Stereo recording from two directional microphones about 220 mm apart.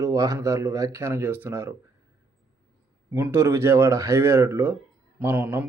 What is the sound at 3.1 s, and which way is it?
Speech, 10° right (ahead or behind).